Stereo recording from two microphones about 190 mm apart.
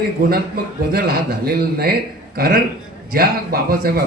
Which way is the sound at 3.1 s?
50° right (ahead or behind).